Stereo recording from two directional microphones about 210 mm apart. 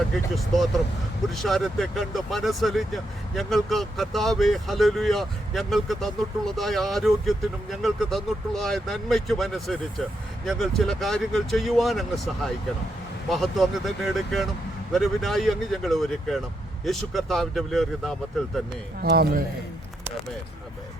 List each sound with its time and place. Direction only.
0.3 s speech: centre (ahead or behind)
19.0 s speech: 50° right (ahead or behind)